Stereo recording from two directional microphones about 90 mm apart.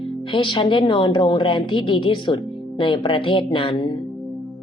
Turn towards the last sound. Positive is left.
turn(degrees=60)  # may be behind; listen again after turning